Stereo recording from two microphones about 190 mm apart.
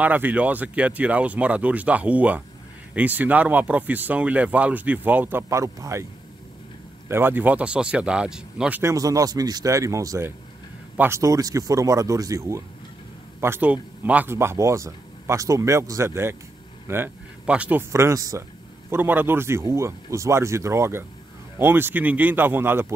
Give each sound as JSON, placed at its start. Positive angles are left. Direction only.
{"t": 0.0, "sound": "speech", "side_deg": -10}
{"t": 7.1, "sound": "speech", "side_deg": -10}